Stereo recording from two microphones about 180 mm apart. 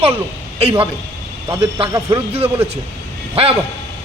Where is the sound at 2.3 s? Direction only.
35° right (ahead or behind).